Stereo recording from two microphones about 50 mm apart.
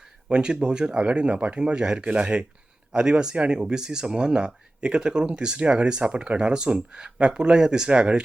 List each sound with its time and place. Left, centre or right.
0.3 s speech: centre